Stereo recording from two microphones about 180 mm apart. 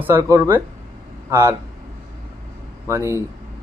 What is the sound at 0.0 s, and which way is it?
Speech, 10° right (ahead or behind).